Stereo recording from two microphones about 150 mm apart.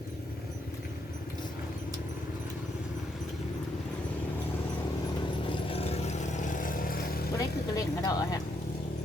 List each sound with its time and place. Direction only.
5.5 s vehicle: 40° left (ahead or behind); by 7.0 s 65° left (ahead or behind)
7.3 s speech: 25° left (ahead or behind)